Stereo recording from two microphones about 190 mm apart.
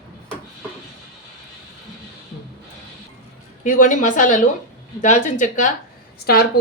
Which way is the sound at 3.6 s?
45° left (ahead or behind).